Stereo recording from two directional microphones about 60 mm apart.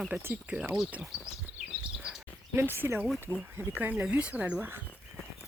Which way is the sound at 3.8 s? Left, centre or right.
Right.